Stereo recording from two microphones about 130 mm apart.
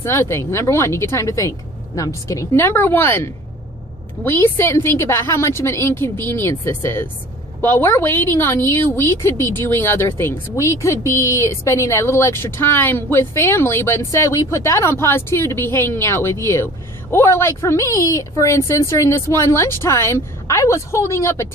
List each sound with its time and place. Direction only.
0.0 s a woman's voice: 20° left (ahead or behind)
4.2 s a woman's voice: 15° left (ahead or behind)